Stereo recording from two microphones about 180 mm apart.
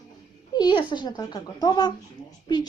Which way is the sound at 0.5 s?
25° left (ahead or behind).